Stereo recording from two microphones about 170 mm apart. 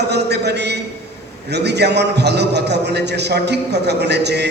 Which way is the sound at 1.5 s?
80° right.